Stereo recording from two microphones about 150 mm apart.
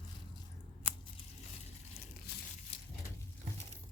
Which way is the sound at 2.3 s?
90° left.